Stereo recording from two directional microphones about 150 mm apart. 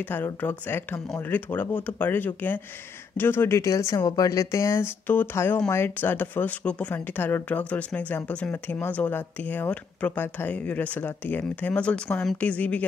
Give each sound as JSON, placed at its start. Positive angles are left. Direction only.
{"t": 0.0, "sound": "speech", "side_deg": 10}